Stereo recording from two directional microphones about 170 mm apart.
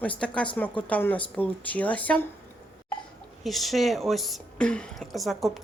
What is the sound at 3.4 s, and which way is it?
A woman's voice, centre (ahead or behind).